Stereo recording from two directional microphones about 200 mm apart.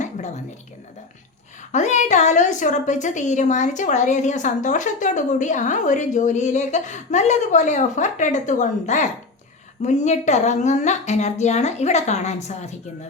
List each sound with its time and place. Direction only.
1.7 s a woman's voice: 35° left (ahead or behind)